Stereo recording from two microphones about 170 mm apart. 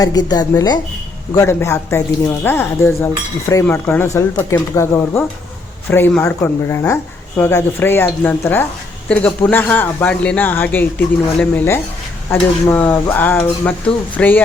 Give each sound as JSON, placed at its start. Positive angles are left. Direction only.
{"t": 0.0, "sound": "a woman's voice", "side_deg": 20}